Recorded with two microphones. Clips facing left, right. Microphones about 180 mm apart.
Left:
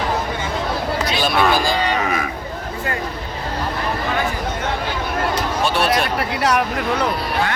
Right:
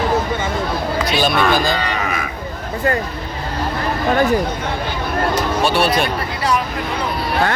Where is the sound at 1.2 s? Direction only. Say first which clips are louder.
Right 1 dB; 5° left (ahead or behind).